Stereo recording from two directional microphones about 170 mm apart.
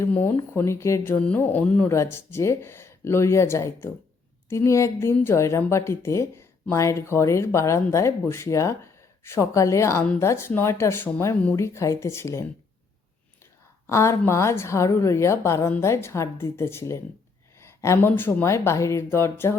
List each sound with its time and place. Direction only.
0.0 s a woman's voice: 10° left (ahead or behind)
13.8 s a woman's voice: 15° left (ahead or behind)